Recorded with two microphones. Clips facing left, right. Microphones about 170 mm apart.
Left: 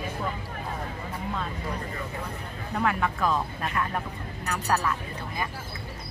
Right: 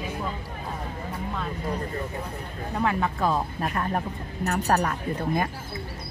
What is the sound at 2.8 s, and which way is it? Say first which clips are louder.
Speech: right 1 dB; 25° right (ahead or behind).